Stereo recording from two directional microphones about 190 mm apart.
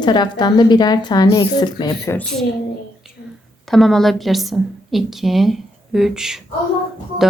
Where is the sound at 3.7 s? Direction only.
Centre (ahead or behind).